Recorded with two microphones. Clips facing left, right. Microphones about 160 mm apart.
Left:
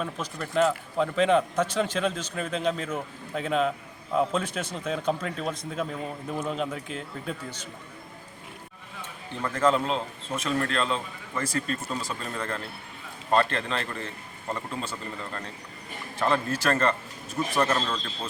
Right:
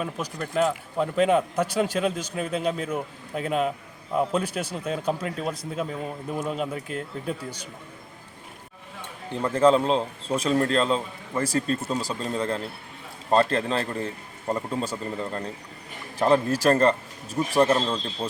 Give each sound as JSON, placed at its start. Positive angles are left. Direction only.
{"t": 0.0, "sound": "speech", "side_deg": -5}
{"t": 9.4, "sound": "a man's voice", "side_deg": -30}